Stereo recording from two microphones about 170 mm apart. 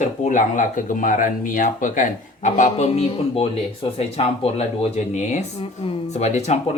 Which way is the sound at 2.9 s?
35° left (ahead or behind).